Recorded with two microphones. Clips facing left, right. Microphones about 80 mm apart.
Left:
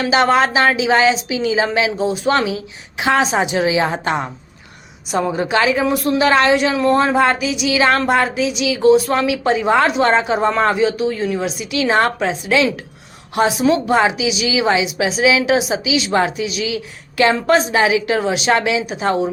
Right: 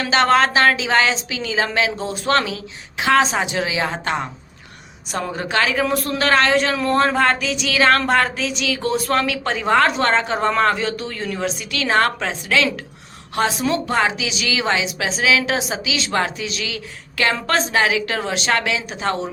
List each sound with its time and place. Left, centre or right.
0.0 s a woman's voice: centre